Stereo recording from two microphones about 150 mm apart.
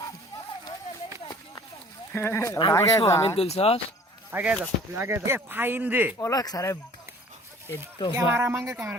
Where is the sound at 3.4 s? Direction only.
40° left (ahead or behind).